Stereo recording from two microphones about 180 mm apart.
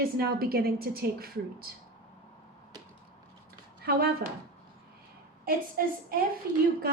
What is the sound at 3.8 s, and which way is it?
Speech, 60° right (ahead or behind).